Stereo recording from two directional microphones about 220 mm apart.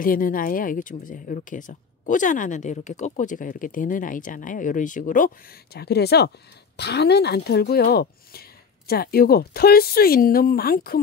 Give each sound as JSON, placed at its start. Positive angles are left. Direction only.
{"t": 0.0, "sound": "speech", "side_deg": 40}